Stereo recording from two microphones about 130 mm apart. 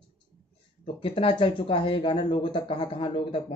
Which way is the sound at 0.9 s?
40° left (ahead or behind).